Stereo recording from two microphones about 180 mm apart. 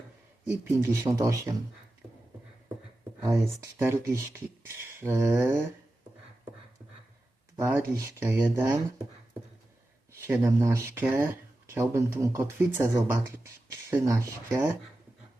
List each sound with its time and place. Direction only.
0.6 s speech: 15° right (ahead or behind)
3.6 s speech: 15° right (ahead or behind)
7.5 s speech: 15° right (ahead or behind)
10.2 s speech: 15° right (ahead or behind)